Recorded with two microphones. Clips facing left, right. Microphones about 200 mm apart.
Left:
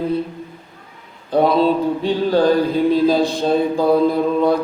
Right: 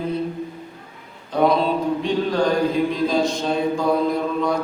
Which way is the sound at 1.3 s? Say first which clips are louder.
Left 4 dB; 30° left (ahead or behind).